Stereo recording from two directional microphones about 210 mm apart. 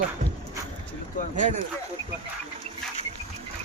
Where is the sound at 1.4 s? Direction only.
35° right (ahead or behind).